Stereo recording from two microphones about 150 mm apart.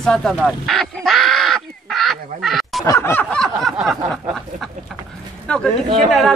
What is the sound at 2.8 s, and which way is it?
Speech, 15° left (ahead or behind).